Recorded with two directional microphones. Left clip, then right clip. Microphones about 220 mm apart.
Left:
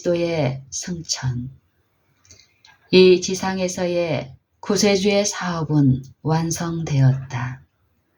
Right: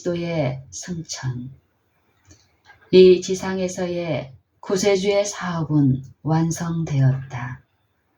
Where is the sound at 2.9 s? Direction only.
30° left (ahead or behind).